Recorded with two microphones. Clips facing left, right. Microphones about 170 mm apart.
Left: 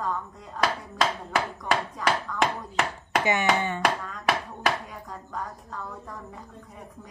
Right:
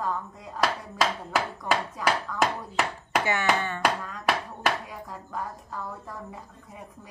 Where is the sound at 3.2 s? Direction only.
20° left (ahead or behind).